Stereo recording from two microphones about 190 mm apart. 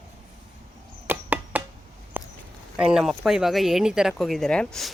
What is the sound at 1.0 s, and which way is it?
Chop, 10° right (ahead or behind).